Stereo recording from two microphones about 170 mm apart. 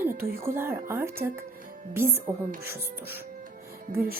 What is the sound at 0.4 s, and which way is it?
Speech, 15° right (ahead or behind).